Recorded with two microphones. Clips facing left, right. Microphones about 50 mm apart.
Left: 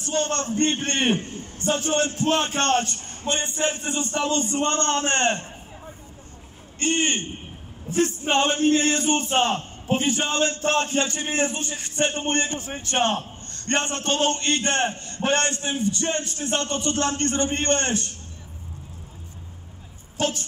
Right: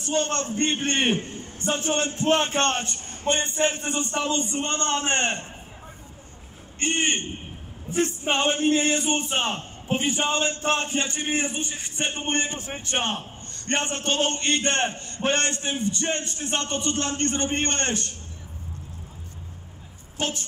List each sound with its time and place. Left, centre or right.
0.0 s a man's voice: right
4.3 s speech: centre
6.8 s a man's voice: right
20.2 s speech: right